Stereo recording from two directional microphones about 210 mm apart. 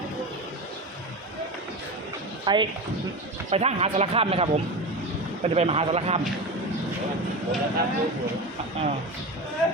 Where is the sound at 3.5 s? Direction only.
30° right (ahead or behind).